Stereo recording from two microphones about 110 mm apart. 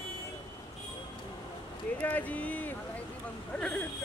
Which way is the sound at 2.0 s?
15° left (ahead or behind).